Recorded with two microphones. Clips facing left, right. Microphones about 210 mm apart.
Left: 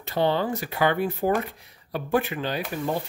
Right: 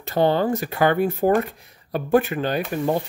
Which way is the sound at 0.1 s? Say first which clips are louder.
Right 4 dB; 45° right (ahead or behind).